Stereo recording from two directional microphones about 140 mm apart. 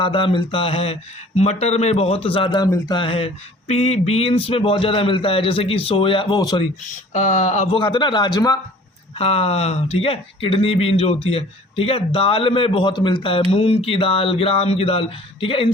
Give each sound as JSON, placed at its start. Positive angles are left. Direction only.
{"t": 0.0, "sound": "a man's voice", "side_deg": 40}
{"t": 7.1, "sound": "speech", "side_deg": 60}
{"t": 7.8, "sound": "speech", "side_deg": 35}
{"t": 9.1, "sound": "speech", "side_deg": 45}